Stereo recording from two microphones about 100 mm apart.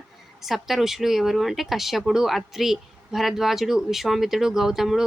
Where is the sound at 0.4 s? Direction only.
Centre (ahead or behind).